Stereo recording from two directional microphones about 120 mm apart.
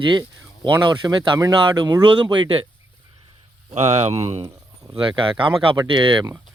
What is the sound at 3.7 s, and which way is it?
Speech, 65° right (ahead or behind).